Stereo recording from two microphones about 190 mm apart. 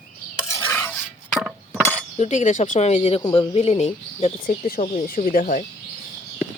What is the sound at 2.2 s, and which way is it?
Speech, 35° left (ahead or behind).